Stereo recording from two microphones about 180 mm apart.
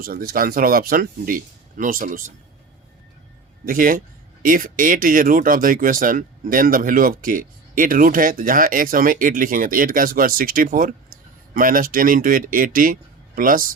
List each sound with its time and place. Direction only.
0.0 s speech: 55° right (ahead or behind)
3.7 s speech: 50° right (ahead or behind)